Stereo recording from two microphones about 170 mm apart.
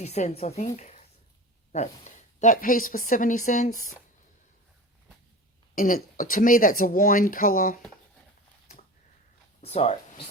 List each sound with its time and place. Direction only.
0.0 s a woman's voice: 40° left (ahead or behind)
0.8 s a sound: 45° left (ahead or behind)
1.7 s speech: 45° left (ahead or behind)
5.7 s speech: 50° left (ahead or behind)
9.6 s speech: 40° left (ahead or behind)